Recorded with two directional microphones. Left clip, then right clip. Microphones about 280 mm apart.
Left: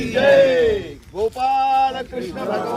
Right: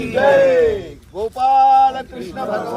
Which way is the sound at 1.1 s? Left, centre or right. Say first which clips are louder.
Right 4 dB; centre.